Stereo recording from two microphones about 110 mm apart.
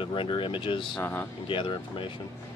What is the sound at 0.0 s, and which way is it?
Speech, 50° left (ahead or behind).